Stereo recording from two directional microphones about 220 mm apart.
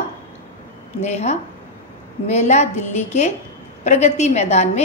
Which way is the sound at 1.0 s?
30° left (ahead or behind).